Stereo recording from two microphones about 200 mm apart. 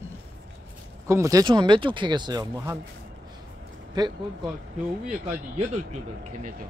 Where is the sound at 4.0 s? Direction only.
20° right (ahead or behind).